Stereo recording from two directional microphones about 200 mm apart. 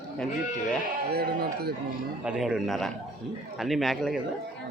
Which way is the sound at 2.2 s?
5° right (ahead or behind).